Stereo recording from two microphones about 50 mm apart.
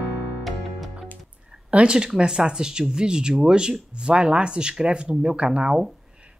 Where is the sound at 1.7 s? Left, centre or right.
Centre.